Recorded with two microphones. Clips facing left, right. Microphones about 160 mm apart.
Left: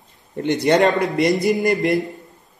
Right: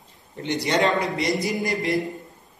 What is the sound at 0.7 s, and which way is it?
A man's voice, 50° left (ahead or behind).